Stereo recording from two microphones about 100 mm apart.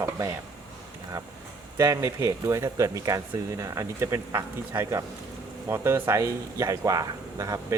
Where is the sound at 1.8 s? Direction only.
30° right (ahead or behind).